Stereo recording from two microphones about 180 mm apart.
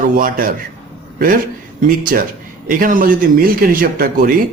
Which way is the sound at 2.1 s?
55° right (ahead or behind).